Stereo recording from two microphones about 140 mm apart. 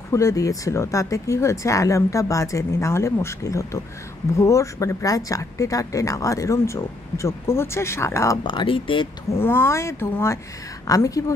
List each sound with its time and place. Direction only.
0.1 s speech: 20° left (ahead or behind)
8.5 s speech: 35° left (ahead or behind)
9.3 s speech: 15° left (ahead or behind)